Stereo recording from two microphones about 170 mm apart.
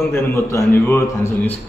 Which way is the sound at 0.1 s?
15° left (ahead or behind).